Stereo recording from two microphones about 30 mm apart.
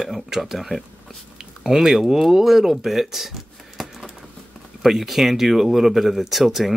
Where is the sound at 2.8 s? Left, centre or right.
Centre.